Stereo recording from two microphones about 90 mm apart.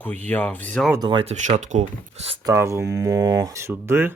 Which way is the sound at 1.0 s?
70° right (ahead or behind).